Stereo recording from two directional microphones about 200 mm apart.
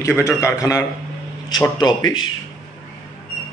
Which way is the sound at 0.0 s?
15° left (ahead or behind).